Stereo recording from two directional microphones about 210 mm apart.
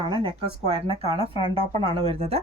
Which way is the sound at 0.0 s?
25° right (ahead or behind).